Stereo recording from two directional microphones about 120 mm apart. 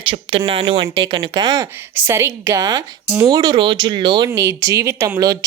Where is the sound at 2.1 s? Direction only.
20° right (ahead or behind); by 4.3 s 40° right (ahead or behind).